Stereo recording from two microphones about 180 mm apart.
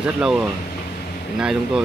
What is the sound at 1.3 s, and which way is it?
Speech, 5° right (ahead or behind).